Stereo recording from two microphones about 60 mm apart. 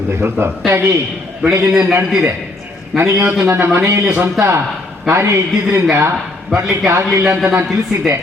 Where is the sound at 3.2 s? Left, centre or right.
Right.